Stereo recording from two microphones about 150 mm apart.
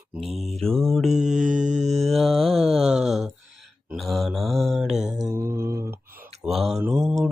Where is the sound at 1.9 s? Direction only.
Centre (ahead or behind).